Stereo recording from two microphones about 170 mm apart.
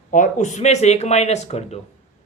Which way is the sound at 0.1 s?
45° left (ahead or behind).